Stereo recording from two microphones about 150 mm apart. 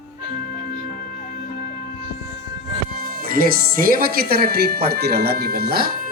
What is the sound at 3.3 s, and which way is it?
Speech, 70° right (ahead or behind).